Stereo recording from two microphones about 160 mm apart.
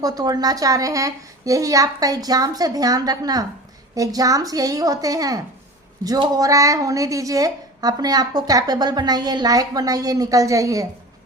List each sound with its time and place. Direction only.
0.0 s a woman's voice: 25° right (ahead or behind)